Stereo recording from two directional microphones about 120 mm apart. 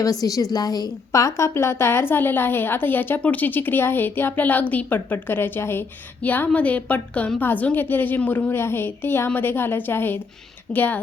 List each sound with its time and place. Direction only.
0.0 s a woman's voice: 30° left (ahead or behind)